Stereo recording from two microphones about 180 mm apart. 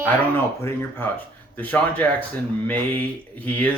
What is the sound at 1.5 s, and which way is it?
Speech, 10° left (ahead or behind).